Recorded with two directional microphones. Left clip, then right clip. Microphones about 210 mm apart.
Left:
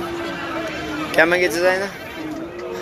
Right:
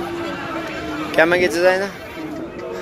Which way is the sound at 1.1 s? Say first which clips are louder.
Right 1 dB; 15° right (ahead or behind).